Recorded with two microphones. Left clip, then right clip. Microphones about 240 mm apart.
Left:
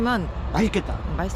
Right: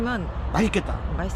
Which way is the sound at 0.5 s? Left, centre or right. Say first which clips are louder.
Even; centre.